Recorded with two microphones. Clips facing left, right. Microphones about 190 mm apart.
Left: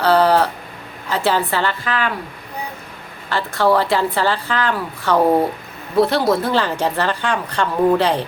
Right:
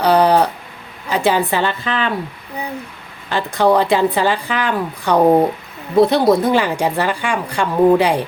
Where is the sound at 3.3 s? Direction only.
15° right (ahead or behind).